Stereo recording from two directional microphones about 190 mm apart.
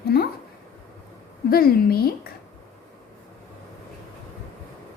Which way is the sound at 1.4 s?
50° left (ahead or behind).